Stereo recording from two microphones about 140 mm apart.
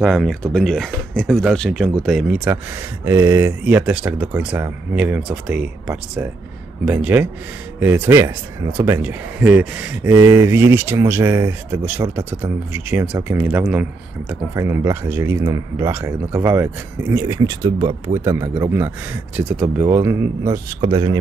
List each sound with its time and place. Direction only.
0.0 s speech: centre (ahead or behind)
3.1 s speech: 20° right (ahead or behind)
14.5 s speech: 20° right (ahead or behind)
17.4 s speech: 30° right (ahead or behind)